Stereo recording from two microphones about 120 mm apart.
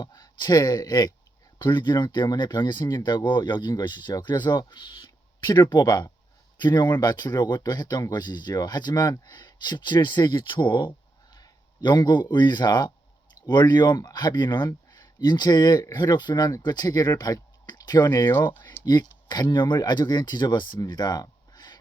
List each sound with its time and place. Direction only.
0.0 s a man's voice: 30° left (ahead or behind)
18.3 s speech: 20° left (ahead or behind)
18.9 s speech: 35° left (ahead or behind)